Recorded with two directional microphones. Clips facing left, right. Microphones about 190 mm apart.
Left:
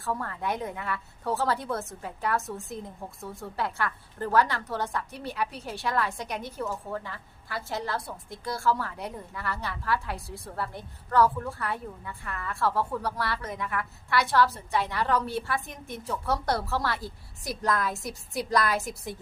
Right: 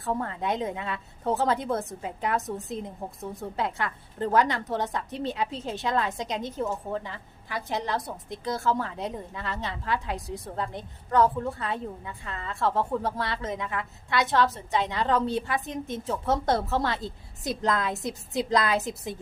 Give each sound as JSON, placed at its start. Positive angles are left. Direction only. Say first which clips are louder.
{"t": 0.0, "sound": "speech", "louder": "right 3 dB", "side_deg": -20}